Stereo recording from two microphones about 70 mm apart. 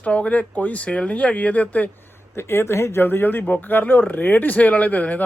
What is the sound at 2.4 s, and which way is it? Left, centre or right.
Speech, left.